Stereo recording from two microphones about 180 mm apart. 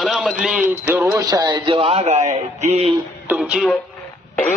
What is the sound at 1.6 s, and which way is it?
Speech, 30° right (ahead or behind).